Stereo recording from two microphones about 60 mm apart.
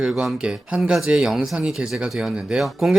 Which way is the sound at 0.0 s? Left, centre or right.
Centre.